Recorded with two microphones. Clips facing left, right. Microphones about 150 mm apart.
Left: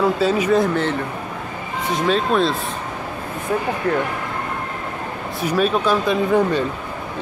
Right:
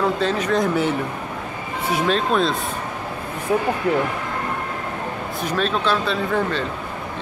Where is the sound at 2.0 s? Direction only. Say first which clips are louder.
Left 2 dB; centre (ahead or behind).